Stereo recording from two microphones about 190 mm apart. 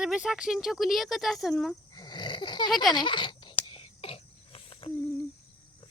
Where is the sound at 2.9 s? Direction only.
25° left (ahead or behind).